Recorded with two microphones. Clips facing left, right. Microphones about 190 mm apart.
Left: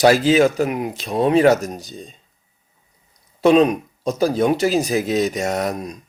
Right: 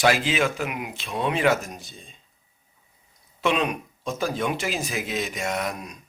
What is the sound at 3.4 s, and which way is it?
Speech, 35° left (ahead or behind).